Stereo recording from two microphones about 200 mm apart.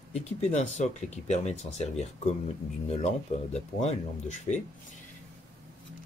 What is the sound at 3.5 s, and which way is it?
Speech, 35° left (ahead or behind).